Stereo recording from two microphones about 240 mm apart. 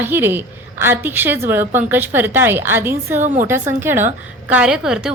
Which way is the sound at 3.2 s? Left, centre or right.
Right.